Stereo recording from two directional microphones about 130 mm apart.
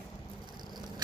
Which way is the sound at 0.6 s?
30° right (ahead or behind).